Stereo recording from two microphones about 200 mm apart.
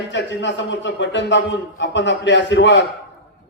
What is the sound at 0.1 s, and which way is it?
A man's voice, 60° left (ahead or behind).